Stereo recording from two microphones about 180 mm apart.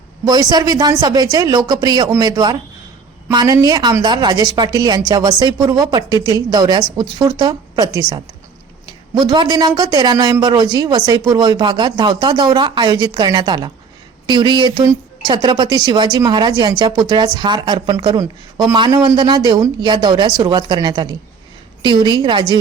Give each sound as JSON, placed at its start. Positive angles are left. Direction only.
{"t": 0.3, "sound": "speech", "side_deg": -20}
{"t": 9.3, "sound": "speech", "side_deg": -25}